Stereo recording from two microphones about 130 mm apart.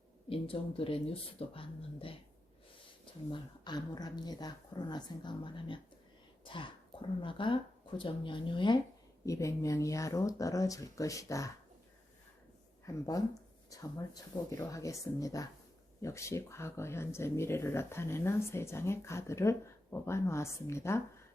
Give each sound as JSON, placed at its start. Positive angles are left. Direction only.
{"t": 0.3, "sound": "speech", "side_deg": 45}
{"t": 3.3, "sound": "speech", "side_deg": 35}
{"t": 6.4, "sound": "whispering", "side_deg": 40}
{"t": 7.2, "sound": "speech", "side_deg": 40}
{"t": 9.2, "sound": "speech", "side_deg": 25}
{"t": 12.8, "sound": "speech", "side_deg": 25}